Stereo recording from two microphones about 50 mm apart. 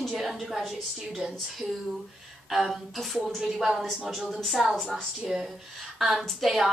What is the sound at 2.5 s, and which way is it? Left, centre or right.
A woman's voice, centre.